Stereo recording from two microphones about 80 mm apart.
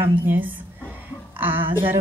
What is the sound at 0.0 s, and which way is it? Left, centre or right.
A woman's voice, right.